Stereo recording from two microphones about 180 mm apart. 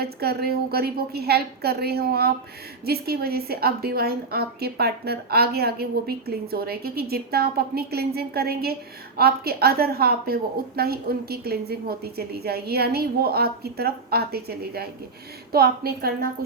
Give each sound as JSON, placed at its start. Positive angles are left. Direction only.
{"t": 0.0, "sound": "a woman's voice", "side_deg": -60}